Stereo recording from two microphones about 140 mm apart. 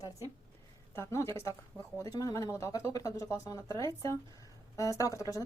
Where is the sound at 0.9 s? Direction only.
20° left (ahead or behind).